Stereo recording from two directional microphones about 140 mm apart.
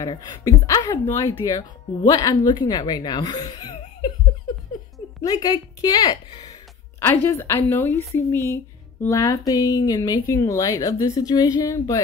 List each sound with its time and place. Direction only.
0.0 s speech: 25° left (ahead or behind)
5.2 s speech: 25° left (ahead or behind)
7.0 s a woman's voice: 15° left (ahead or behind)